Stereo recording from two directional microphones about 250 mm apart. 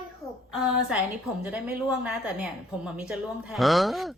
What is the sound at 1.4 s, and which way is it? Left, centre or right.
Speech, centre.